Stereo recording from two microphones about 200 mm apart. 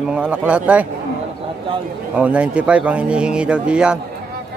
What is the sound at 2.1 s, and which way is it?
Speech, 5° right (ahead or behind).